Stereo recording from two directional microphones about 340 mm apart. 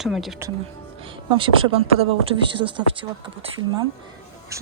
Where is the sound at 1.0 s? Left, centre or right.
Centre.